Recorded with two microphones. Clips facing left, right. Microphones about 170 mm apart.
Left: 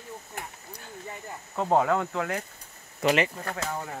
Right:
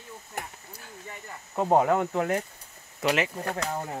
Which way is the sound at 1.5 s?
15° right (ahead or behind).